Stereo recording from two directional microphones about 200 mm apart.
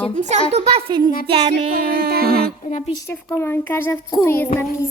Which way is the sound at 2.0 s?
50° right (ahead or behind).